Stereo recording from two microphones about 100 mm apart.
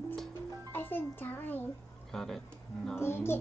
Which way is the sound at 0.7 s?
20° left (ahead or behind).